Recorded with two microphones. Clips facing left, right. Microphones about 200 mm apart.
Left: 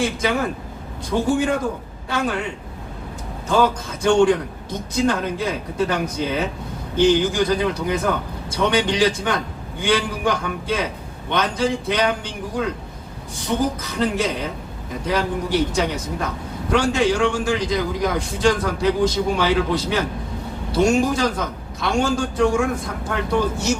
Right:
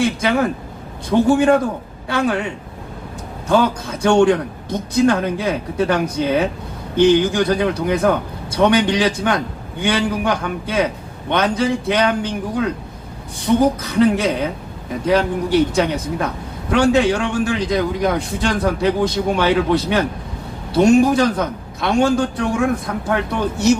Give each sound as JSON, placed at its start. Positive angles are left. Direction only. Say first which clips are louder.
{"t": 0.0, "sound": "a man's voice", "louder": "right 3 dB", "side_deg": -60}
{"t": 1.4, "sound": "a man's voice", "louder": "right 6 dB", "side_deg": -60}
{"t": 3.8, "sound": "a man's voice", "louder": "right 3 dB", "side_deg": -60}
{"t": 13.6, "sound": "a man's voice", "louder": "right 7 dB", "side_deg": -60}